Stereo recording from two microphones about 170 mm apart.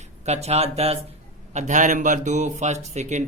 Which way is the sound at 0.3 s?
40° right (ahead or behind).